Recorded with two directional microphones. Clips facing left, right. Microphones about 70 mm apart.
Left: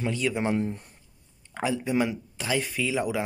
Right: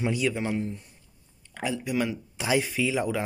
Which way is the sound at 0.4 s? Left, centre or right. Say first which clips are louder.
Left 3 dB; left.